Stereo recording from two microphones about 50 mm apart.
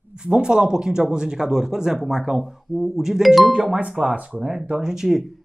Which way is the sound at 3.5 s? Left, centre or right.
Centre.